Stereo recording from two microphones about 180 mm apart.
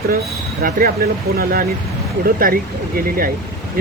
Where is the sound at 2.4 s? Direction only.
55° right (ahead or behind).